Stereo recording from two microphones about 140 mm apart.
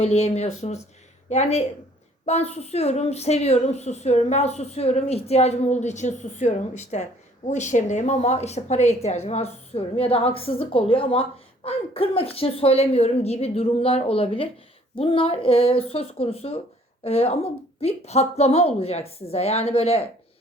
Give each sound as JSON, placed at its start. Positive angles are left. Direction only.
{"t": 0.0, "sound": "a woman's voice", "side_deg": 45}